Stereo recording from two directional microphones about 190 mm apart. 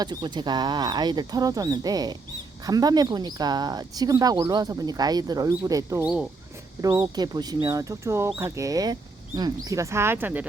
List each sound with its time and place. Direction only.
0.0 s speech: 20° right (ahead or behind)